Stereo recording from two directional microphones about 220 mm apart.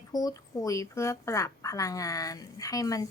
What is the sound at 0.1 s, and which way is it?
A woman's voice, 15° left (ahead or behind).